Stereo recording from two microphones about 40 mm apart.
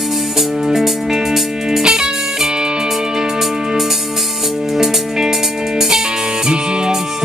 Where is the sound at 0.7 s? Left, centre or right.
Centre.